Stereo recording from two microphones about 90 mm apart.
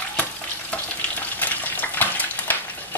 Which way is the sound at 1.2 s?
20° left (ahead or behind).